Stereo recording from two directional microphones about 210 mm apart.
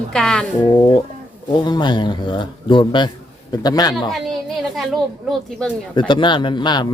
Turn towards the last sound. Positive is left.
turn(degrees=20)  # may be behind; listen again after turning